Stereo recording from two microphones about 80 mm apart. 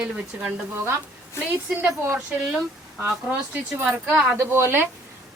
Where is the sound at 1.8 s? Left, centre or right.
Right.